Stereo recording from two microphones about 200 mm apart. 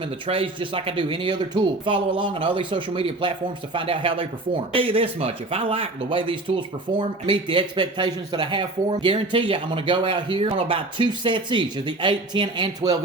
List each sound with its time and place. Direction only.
0.3 s speech: 25° right (ahead or behind)